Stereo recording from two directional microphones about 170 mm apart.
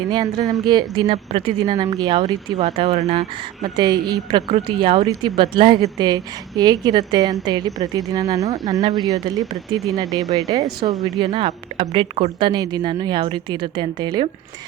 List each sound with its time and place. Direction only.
0.1 s speech: 25° right (ahead or behind)
2.6 s speech: 35° right (ahead or behind)